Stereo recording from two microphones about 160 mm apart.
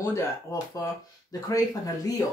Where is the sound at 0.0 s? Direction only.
15° left (ahead or behind).